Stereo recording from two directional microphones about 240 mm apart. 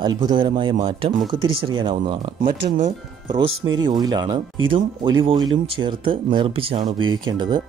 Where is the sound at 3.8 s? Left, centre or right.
Centre.